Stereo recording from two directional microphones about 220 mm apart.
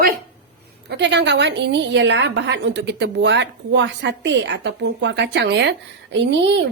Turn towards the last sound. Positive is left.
turn(degrees=-55)  # may be behind; listen again after turning